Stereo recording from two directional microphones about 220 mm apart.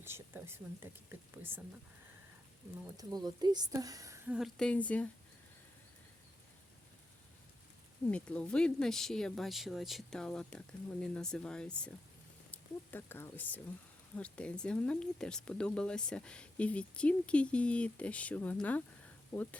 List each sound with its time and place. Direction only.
0.0 s a woman's voice: 10° right (ahead or behind)
3.0 s a woman's voice: 15° right (ahead or behind)
4.4 s speech: centre (ahead or behind)
8.0 s speech: 5° left (ahead or behind)